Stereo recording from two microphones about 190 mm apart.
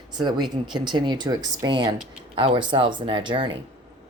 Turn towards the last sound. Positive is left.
turn(degrees=-25)  # may be behind; listen again after turning